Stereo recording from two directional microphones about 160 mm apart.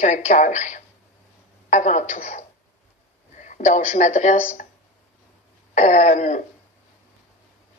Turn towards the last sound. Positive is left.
turn(degrees=50)  # may be behind; listen again after turning